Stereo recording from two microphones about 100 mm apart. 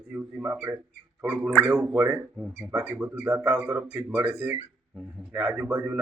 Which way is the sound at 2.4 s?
10° right (ahead or behind).